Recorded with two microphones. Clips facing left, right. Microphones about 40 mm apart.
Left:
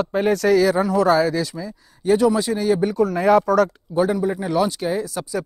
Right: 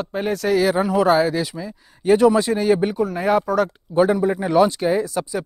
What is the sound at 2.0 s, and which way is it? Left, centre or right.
Speech, right.